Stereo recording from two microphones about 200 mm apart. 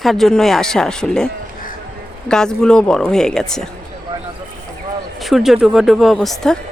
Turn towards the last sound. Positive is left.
turn(degrees=0)  # may be behind; listen again after turning